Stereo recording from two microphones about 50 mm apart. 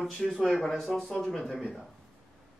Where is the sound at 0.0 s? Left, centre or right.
Centre.